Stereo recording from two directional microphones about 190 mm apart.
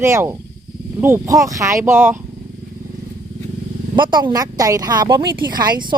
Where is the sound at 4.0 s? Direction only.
25° right (ahead or behind).